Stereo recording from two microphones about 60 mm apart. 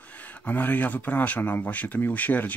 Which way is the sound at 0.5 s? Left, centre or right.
Left.